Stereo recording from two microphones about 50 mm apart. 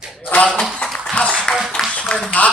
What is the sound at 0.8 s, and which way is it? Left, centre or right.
Tap, centre.